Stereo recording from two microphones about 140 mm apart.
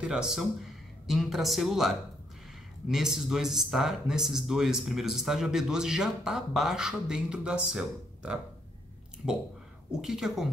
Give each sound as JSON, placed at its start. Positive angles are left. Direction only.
{"t": 0.0, "sound": "speech", "side_deg": -5}
{"t": 10.0, "sound": "speech", "side_deg": -5}